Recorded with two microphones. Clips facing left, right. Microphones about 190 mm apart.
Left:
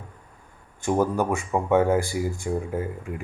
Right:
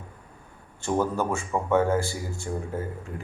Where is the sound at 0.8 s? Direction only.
15° left (ahead or behind).